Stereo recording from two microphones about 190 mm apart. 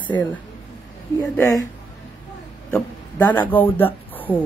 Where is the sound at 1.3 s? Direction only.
15° left (ahead or behind).